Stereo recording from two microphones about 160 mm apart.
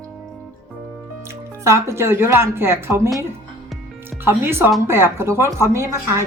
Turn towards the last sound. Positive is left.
turn(degrees=-15)  # may be behind; listen again after turning